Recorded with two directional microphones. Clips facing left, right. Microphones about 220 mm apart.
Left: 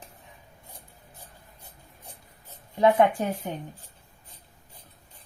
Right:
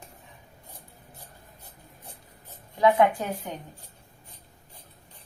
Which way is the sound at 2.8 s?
25° left (ahead or behind).